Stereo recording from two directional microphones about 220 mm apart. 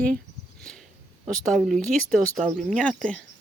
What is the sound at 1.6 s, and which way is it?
Speech, centre (ahead or behind).